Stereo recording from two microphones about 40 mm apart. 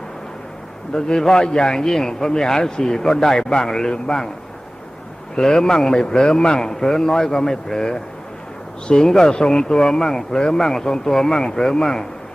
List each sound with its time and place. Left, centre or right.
0.9 s a man's voice: centre
5.4 s a man's voice: centre
9.0 s a man's voice: centre